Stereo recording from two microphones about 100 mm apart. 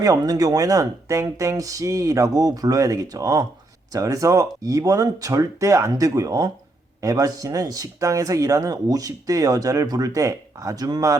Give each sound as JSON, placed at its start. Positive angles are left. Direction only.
{"t": 0.0, "sound": "speech", "side_deg": -35}